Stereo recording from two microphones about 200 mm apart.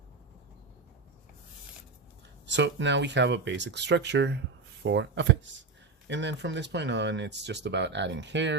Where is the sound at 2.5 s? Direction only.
65° right (ahead or behind).